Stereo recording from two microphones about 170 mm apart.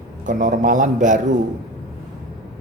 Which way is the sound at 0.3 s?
50° right (ahead or behind).